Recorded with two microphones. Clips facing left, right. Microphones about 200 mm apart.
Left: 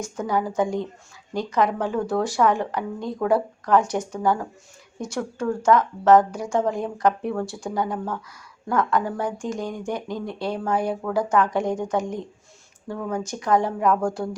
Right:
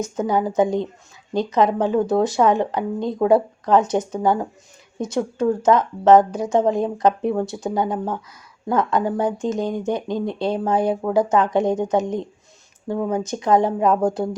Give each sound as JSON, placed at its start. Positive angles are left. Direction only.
{"t": 0.0, "sound": "speech", "side_deg": -20}